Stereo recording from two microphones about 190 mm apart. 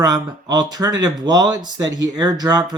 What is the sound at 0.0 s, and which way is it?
Speech, 20° right (ahead or behind).